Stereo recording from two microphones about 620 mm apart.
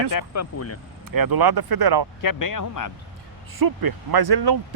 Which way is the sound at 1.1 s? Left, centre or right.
Right.